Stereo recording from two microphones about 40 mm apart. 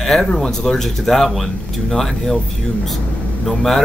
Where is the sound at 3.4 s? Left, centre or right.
Centre.